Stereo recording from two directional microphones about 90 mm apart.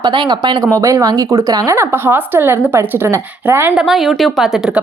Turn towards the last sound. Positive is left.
turn(degrees=0)  # may be behind; listen again after turning